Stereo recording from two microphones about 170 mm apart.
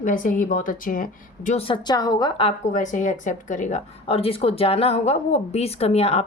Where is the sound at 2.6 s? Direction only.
45° left (ahead or behind).